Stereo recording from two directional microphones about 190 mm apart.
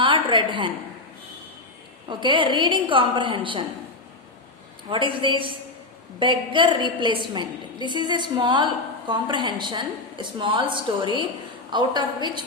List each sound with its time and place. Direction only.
0.0 s a sound: 25° right (ahead or behind)
2.0 s a woman's voice: 25° right (ahead or behind)
4.9 s a woman's voice: 25° right (ahead or behind)